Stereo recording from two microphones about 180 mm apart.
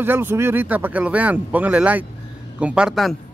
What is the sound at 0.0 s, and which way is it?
A man's voice, 10° right (ahead or behind).